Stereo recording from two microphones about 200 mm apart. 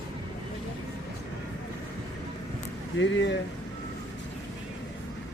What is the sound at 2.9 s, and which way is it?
Speech, 65° left (ahead or behind).